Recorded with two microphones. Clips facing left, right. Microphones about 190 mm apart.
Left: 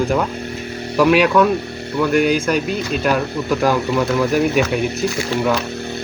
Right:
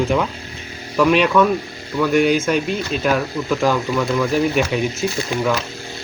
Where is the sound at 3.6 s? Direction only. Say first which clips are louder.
Left 2 dB; 10° left (ahead or behind).